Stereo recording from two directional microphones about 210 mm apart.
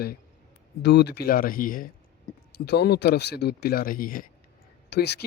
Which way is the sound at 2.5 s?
50° left (ahead or behind).